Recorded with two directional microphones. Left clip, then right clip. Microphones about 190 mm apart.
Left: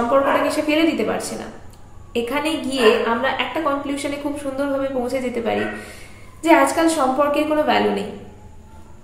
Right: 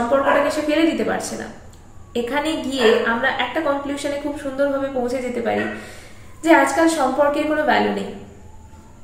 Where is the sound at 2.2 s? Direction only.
20° left (ahead or behind).